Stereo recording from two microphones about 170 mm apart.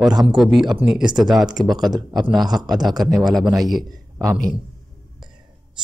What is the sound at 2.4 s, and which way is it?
Speech, 25° right (ahead or behind).